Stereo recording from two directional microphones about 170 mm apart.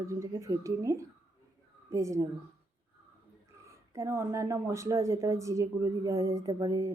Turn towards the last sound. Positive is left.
turn(degrees=-20)  # may be behind; listen again after turning